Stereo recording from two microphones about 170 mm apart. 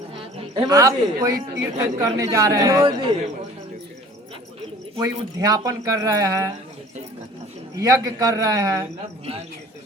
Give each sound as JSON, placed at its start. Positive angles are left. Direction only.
{"t": 0.5, "sound": "speech", "side_deg": -20}
{"t": 4.9, "sound": "speech", "side_deg": -20}
{"t": 7.8, "sound": "speech", "side_deg": -20}